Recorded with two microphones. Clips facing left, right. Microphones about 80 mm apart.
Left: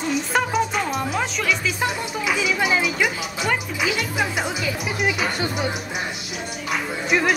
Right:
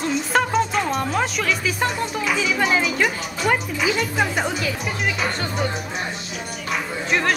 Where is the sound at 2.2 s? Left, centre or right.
Centre.